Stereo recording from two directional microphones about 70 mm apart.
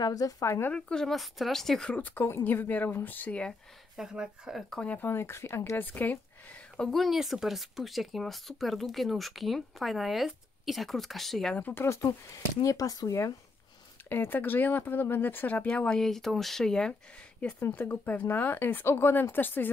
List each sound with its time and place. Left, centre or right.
0.0 s speech: left
0.7 s speech: centre
1.9 s speech: left
3.9 s speech: centre
4.6 s speech: centre
4.9 s speech: left
5.8 s speech: left
6.8 s speech: centre
11.5 s speech: left
11.8 s speech: left
12.6 s speech: left
14.0 s speech: left
16.0 s speech: centre
17.6 s speech: left